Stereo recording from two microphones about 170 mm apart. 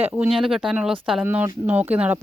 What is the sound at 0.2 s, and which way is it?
Speech, centre (ahead or behind).